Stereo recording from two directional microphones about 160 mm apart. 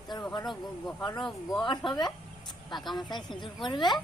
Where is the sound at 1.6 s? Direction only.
30° left (ahead or behind).